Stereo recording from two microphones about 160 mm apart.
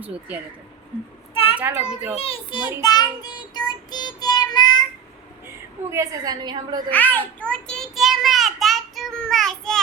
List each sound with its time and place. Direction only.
1.3 s a sound: 35° left (ahead or behind)
1.5 s a child's voice: 10° right (ahead or behind)
2.1 s child singing: 35° left (ahead or behind)
5.9 s a woman's voice: 20° right (ahead or behind)
6.9 s child singing: 10° left (ahead or behind)